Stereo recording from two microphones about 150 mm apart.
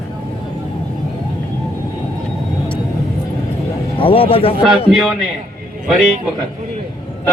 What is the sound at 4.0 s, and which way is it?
Speech, 35° left (ahead or behind).